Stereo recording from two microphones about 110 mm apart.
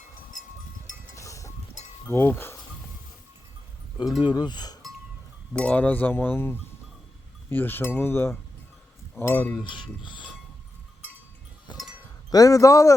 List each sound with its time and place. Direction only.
1.1 s a sound: 30° left (ahead or behind)
4.2 s speech: 45° left (ahead or behind)
5.5 s chink: 10° left (ahead or behind)
7.5 s a sound: 20° left (ahead or behind)
9.6 s speech: 45° left (ahead or behind)
12.3 s speech: 30° left (ahead or behind)